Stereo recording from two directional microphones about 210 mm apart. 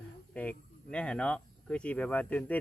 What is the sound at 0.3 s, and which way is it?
Speech, 5° left (ahead or behind).